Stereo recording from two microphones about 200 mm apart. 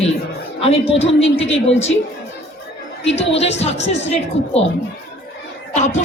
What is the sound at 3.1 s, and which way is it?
Speech, 30° left (ahead or behind).